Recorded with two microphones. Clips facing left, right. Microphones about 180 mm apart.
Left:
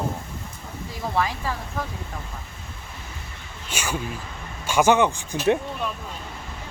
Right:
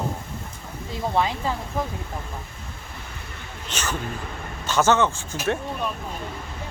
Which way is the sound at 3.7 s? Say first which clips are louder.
Left 1 dB; 10° left (ahead or behind).